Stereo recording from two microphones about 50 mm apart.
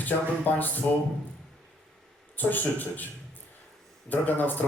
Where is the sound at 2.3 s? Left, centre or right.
Left.